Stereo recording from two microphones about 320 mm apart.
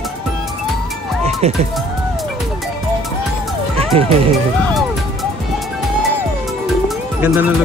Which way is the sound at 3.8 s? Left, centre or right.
Centre.